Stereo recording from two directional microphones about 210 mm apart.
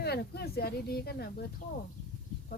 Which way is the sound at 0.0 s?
50° left (ahead or behind).